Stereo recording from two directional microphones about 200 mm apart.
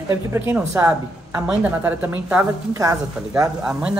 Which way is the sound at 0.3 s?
10° right (ahead or behind).